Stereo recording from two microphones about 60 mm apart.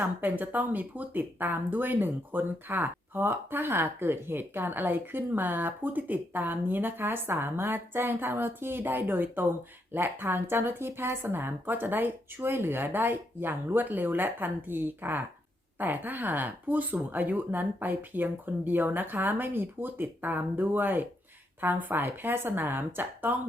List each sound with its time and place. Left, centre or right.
0.0 s speech: right